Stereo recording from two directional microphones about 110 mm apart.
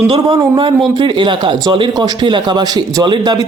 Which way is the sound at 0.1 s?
50° right (ahead or behind).